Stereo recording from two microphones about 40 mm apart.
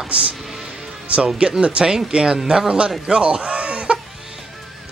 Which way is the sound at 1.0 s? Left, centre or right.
Right.